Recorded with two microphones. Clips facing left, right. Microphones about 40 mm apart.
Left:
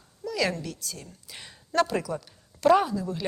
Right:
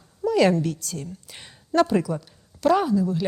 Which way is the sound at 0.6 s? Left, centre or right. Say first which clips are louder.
Right 9 dB; right.